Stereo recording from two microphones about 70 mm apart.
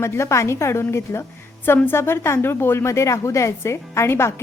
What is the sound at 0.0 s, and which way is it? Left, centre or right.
A woman's voice, left.